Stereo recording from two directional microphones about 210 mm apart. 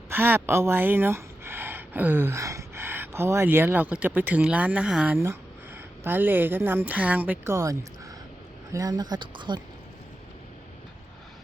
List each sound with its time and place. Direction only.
0.1 s speech: 10° right (ahead or behind)